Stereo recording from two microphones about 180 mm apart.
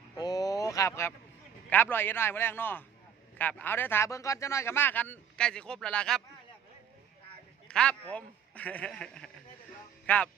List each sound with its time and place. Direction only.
0.2 s a sound: 20° left (ahead or behind)
1.7 s speech: 10° left (ahead or behind)
7.7 s a man's voice: 5° left (ahead or behind)